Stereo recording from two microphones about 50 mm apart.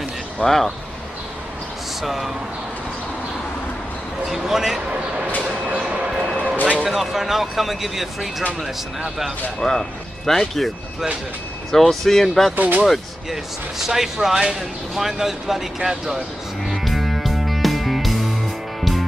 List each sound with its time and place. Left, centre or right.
0.4 s speech: centre
2.0 s speech: centre
4.3 s speech: centre
5.7 s a sound: right
6.3 s a sound: left
6.9 s speech: centre
9.6 s speech: centre
12.5 s speech: right
12.8 s speech: centre
16.6 s music: centre